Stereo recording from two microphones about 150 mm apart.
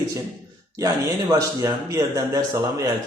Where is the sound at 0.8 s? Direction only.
20° right (ahead or behind).